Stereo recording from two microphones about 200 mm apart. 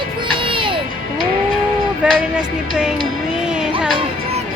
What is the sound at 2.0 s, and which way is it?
Speech, 5° right (ahead or behind).